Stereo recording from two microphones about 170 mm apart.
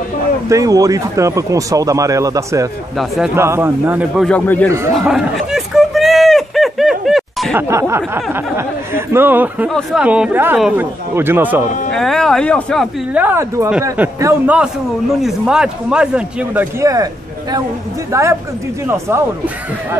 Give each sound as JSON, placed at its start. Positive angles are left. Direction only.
{"t": 0.5, "sound": "speech", "side_deg": -20}
{"t": 4.3, "sound": "speech", "side_deg": 10}
{"t": 4.6, "sound": "speech", "side_deg": -15}
{"t": 4.9, "sound": "a sound", "side_deg": -5}
{"t": 7.5, "sound": "speech", "side_deg": -15}
{"t": 9.7, "sound": "a man's voice", "side_deg": 5}
{"t": 11.9, "sound": "a man's voice", "side_deg": 5}
{"t": 13.1, "sound": "a man's voice", "side_deg": -10}
{"t": 16.8, "sound": "speech", "side_deg": -20}